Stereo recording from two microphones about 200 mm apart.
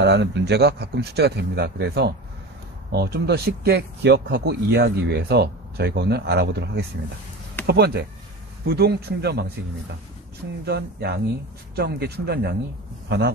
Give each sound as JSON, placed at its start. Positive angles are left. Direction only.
{"t": 0.0, "sound": "speech", "side_deg": -60}
{"t": 10.6, "sound": "speech", "side_deg": -55}